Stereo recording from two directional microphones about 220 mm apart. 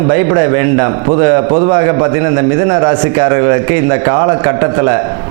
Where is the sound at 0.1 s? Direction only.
20° right (ahead or behind).